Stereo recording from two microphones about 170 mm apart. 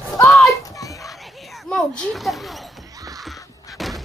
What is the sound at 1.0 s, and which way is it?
Basketball bounce, centre (ahead or behind).